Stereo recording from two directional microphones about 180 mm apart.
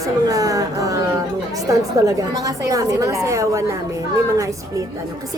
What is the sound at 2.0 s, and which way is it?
A woman's voice, 20° right (ahead or behind).